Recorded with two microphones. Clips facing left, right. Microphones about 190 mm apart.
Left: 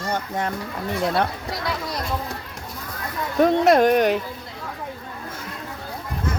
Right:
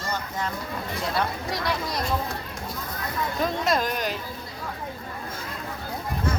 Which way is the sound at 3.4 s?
65° left (ahead or behind).